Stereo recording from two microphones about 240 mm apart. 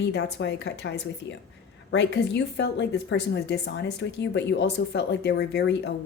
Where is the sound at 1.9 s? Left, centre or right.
Left.